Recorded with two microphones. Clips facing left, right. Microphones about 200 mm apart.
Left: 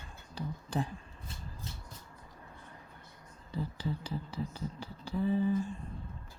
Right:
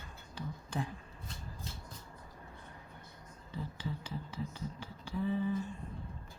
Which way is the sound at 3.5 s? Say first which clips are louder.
Left 4 dB; 35° left (ahead or behind).